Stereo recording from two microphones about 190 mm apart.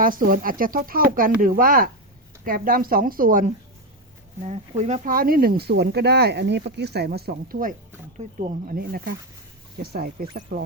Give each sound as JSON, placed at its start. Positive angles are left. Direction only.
{"t": 0.0, "sound": "speech", "side_deg": -45}
{"t": 4.4, "sound": "speech", "side_deg": -35}